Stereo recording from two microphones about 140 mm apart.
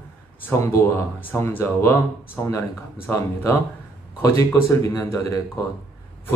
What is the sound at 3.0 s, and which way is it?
Speech, 20° left (ahead or behind).